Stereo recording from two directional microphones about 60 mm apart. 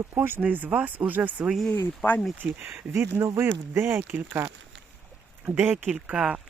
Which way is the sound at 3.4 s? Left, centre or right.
Right.